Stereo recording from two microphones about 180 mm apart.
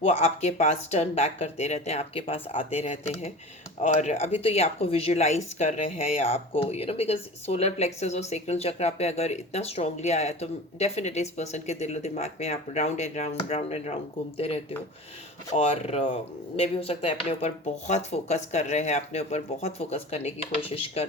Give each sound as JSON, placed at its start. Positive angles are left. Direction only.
{"t": 0.0, "sound": "speech", "side_deg": 35}